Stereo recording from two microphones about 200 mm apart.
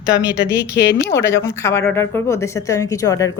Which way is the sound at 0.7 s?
55° left (ahead or behind).